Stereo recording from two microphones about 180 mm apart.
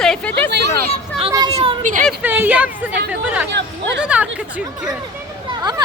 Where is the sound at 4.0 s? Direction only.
5° right (ahead or behind).